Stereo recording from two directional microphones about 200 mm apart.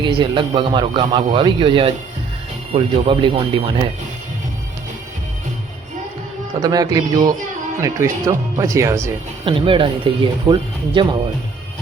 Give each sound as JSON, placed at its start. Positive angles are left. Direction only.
{"t": 0.0, "sound": "a man's voice", "side_deg": -25}
{"t": 6.6, "sound": "a man's voice", "side_deg": -20}
{"t": 9.4, "sound": "a man's voice", "side_deg": -25}